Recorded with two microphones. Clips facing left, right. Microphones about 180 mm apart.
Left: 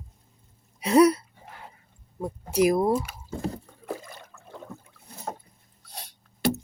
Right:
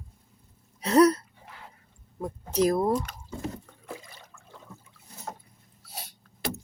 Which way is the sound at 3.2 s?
40° left (ahead or behind).